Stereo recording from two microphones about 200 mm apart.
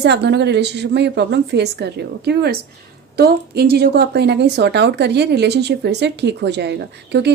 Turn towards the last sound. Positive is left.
turn(degrees=-55)  # may be behind; listen again after turning